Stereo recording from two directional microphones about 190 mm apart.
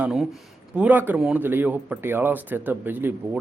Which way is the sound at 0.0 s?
5° right (ahead or behind).